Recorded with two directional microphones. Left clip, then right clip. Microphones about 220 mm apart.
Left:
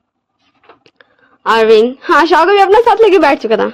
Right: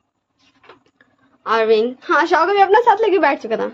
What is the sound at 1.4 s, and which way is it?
A woman's voice, 50° left (ahead or behind).